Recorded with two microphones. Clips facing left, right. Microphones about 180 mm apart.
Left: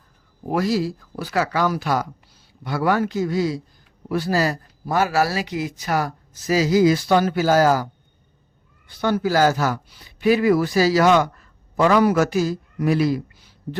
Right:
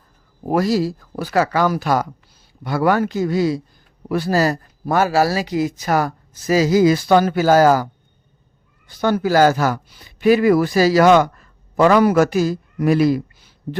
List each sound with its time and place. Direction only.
0.4 s speech: 40° right (ahead or behind); by 3.6 s 65° right (ahead or behind)
4.3 s speech: 45° right (ahead or behind)
5.1 s speech: 35° right (ahead or behind); by 7.9 s 55° right (ahead or behind)
8.9 s speech: 45° right (ahead or behind)